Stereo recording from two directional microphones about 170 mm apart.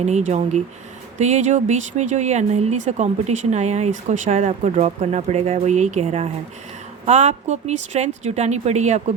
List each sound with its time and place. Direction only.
0.0 s speech: 40° right (ahead or behind)